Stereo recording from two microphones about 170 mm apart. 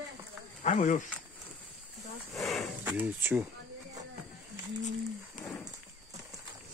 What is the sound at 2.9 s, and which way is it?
Speech, 10° right (ahead or behind).